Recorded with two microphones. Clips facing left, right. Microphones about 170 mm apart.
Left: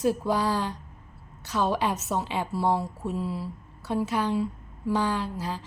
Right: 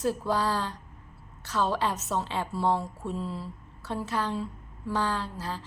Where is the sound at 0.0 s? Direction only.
15° left (ahead or behind).